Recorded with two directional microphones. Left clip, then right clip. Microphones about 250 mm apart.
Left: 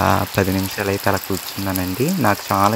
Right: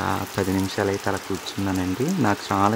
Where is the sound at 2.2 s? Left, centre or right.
Centre.